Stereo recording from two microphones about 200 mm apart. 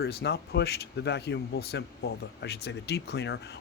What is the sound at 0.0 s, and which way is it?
Speech, 50° left (ahead or behind).